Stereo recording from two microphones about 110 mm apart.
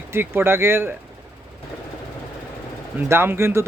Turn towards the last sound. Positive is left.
turn(degrees=-25)  # may be behind; listen again after turning